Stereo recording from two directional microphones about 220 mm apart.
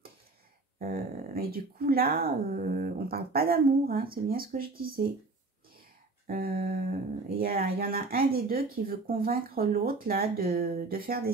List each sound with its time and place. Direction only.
0.7 s speech: 40° right (ahead or behind)
6.2 s speech: 40° right (ahead or behind)